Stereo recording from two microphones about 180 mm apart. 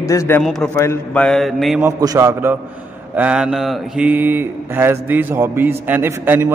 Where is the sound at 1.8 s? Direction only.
15° right (ahead or behind).